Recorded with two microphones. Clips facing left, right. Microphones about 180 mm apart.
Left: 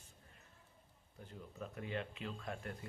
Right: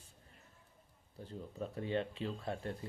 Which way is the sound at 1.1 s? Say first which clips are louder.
Right 6 dB; 30° right (ahead or behind).